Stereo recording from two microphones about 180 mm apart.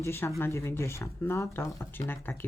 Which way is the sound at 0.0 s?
15° left (ahead or behind).